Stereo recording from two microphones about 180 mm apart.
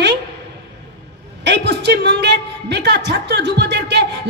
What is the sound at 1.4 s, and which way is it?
A man's voice, 75° right (ahead or behind).